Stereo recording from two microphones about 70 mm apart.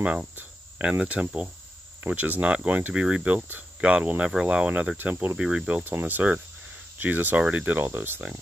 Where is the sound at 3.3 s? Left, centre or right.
Right.